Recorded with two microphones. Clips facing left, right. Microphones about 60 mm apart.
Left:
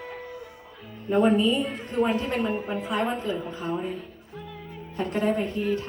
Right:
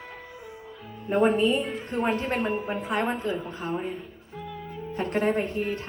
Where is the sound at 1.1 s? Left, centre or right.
Right.